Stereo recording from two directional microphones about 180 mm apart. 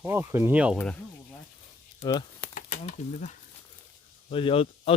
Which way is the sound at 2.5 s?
40° left (ahead or behind).